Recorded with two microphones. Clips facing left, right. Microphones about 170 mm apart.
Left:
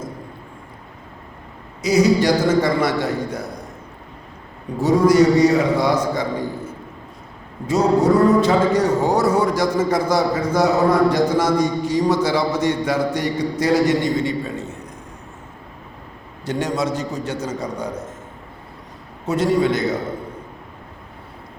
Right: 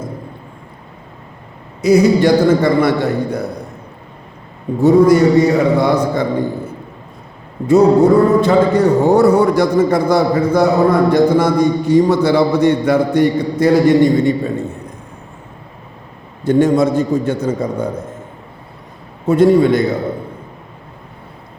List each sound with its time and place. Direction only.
1.8 s speech: 55° right (ahead or behind)
4.8 s speech: 60° right (ahead or behind)
7.7 s speech: 60° right (ahead or behind)
16.5 s speech: 55° right (ahead or behind)
19.3 s speech: 55° right (ahead or behind)